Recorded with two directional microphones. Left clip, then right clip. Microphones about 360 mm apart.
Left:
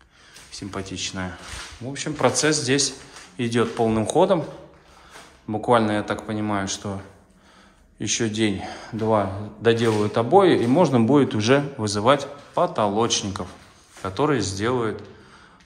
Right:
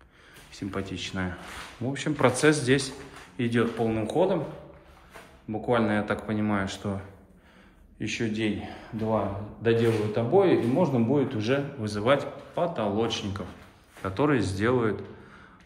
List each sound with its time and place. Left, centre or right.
0.5 s a man's voice: centre
5.7 s a man's voice: centre
8.0 s a man's voice: centre